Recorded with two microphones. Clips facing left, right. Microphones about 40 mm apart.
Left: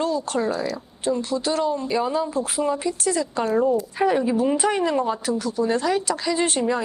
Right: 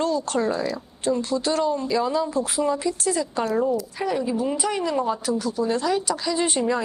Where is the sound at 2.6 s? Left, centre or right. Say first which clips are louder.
Left 1 dB; left.